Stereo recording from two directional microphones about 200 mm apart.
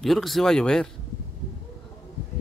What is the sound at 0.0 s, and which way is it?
Speech, centre (ahead or behind).